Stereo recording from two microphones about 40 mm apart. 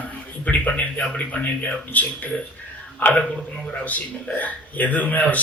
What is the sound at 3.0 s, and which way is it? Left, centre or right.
Gasp, left.